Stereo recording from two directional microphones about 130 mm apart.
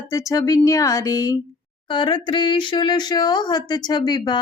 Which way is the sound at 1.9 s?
35° left (ahead or behind).